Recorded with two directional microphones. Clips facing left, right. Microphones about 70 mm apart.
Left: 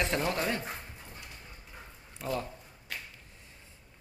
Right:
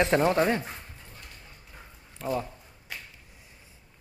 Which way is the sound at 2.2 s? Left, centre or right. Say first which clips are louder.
Right 4 dB; centre.